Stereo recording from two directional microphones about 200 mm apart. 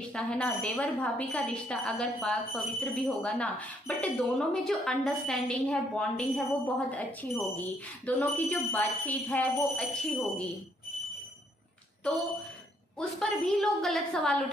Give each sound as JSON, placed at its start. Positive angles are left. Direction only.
{"t": 0.1, "sound": "a woman's voice", "side_deg": 5}
{"t": 13.2, "sound": "a woman's voice", "side_deg": 0}